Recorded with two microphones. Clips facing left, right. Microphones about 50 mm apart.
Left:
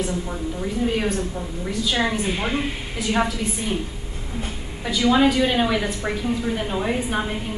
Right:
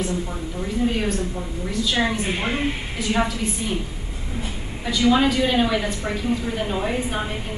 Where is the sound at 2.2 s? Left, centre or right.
Centre.